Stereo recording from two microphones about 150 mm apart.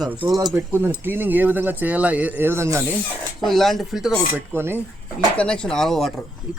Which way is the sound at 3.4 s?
Centre (ahead or behind).